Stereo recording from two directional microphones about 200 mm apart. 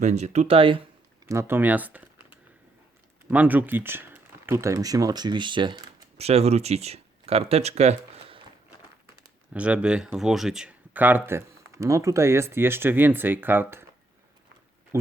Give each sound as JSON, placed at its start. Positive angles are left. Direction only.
{"t": 0.0, "sound": "speech", "side_deg": -35}
{"t": 1.3, "sound": "speech", "side_deg": -10}
{"t": 9.5, "sound": "speech", "side_deg": -5}